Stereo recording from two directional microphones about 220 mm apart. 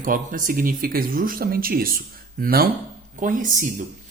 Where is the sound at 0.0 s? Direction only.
40° right (ahead or behind).